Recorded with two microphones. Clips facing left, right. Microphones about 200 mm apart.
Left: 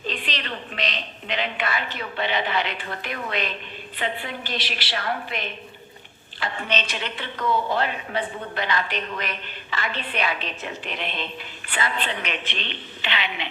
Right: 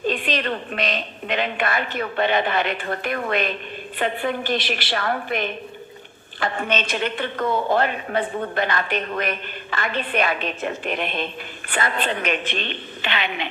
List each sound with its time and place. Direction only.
0.1 s a woman's voice: 50° right (ahead or behind)